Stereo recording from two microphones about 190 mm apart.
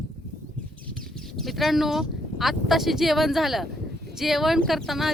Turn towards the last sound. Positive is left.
turn(degrees=0)  # may be behind; listen again after turning